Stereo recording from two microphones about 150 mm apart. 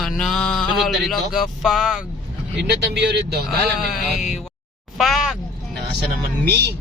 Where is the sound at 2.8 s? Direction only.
90° right.